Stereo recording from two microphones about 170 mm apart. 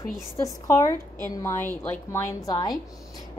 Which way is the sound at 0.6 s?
20° left (ahead or behind).